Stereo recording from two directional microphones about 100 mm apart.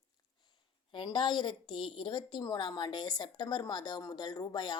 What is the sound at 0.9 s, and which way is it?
A woman's voice, 50° left (ahead or behind).